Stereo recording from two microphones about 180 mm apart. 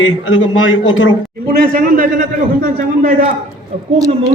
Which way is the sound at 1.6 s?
50° right (ahead or behind).